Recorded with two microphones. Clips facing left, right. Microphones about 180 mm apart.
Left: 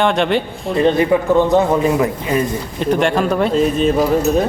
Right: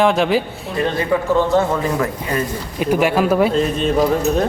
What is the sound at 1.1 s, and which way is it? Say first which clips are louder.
A man's voice: left 3 dB; 20° left (ahead or behind).